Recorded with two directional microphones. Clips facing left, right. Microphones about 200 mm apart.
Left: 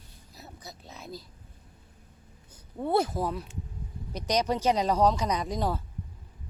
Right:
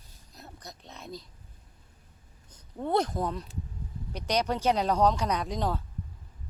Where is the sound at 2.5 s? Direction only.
5° left (ahead or behind).